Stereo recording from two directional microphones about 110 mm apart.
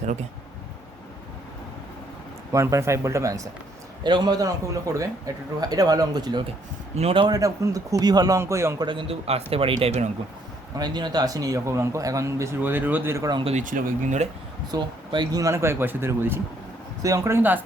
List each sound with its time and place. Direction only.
2.5 s a man's voice: 30° right (ahead or behind)
4.0 s a man's voice: 40° right (ahead or behind)
6.9 s a man's voice: 60° right (ahead or behind)
7.3 s a man's voice: 30° right (ahead or behind)
8.8 s a man's voice: 45° right (ahead or behind); by 10.1 s 65° right (ahead or behind)
10.8 s a man's voice: 40° right (ahead or behind); by 13.2 s 20° right (ahead or behind)
13.4 s speech: 80° right
14.7 s a man's voice: 40° right (ahead or behind); by 17.6 s 20° right (ahead or behind)